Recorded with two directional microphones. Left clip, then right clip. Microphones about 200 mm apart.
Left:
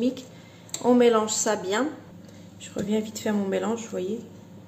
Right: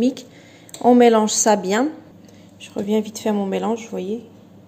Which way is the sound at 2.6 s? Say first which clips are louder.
Right 6 dB; 20° right (ahead or behind).